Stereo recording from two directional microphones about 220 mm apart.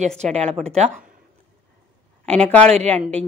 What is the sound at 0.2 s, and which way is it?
Speech, 30° right (ahead or behind).